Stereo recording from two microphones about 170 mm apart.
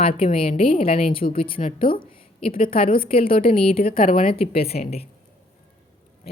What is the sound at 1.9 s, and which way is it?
Speech, 55° left (ahead or behind).